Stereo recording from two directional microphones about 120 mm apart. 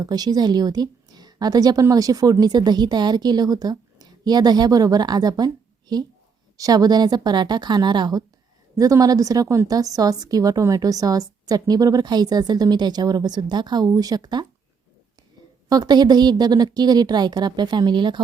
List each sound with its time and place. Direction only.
0.0 s a woman's voice: 35° right (ahead or behind)
6.6 s a woman's voice: 30° right (ahead or behind)
15.7 s a woman's voice: 35° right (ahead or behind)